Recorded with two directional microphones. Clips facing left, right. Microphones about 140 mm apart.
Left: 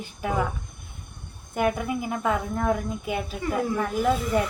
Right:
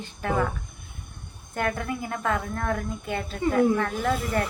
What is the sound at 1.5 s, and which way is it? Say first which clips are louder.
Speech: left 3 dB; 10° left (ahead or behind).